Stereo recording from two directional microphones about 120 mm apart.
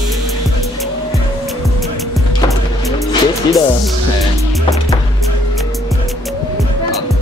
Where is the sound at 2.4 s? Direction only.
Centre (ahead or behind).